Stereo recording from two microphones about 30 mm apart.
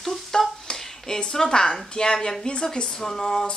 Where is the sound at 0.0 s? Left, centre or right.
Centre.